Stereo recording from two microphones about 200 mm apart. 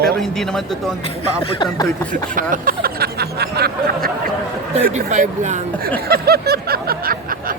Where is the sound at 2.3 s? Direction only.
45° right (ahead or behind).